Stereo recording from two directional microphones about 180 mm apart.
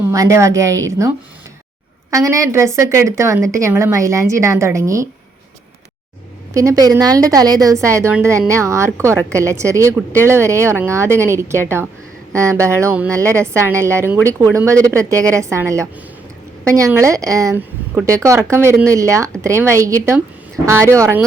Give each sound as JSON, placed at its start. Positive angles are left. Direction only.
{"t": 0.0, "sound": "a woman's voice", "side_deg": -15}
{"t": 6.5, "sound": "a woman's voice", "side_deg": -15}